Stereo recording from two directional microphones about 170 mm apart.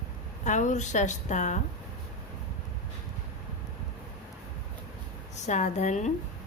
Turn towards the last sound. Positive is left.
turn(degrees=45)  # may be behind; listen again after turning